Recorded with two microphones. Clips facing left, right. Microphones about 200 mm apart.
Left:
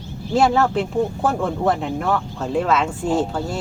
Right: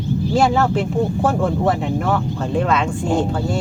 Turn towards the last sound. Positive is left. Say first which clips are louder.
# right 1 dB
turn(degrees=5)  # may be behind; listen again after turning